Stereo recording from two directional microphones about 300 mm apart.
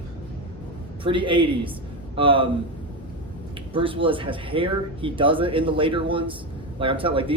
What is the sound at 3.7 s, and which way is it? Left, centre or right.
Speech, centre.